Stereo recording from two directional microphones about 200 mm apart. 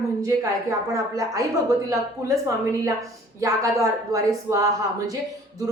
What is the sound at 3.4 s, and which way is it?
Speech, 15° right (ahead or behind).